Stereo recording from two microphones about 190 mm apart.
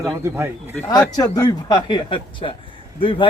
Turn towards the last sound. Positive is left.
turn(degrees=25)  # may be behind; listen again after turning